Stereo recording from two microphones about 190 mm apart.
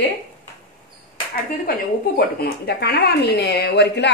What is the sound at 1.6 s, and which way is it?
A woman's voice, 55° left (ahead or behind).